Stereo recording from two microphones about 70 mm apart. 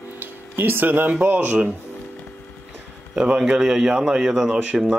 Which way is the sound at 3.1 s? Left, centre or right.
Centre.